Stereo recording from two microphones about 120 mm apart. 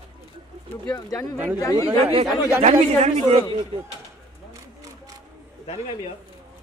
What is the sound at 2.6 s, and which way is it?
Speech, 70° right (ahead or behind).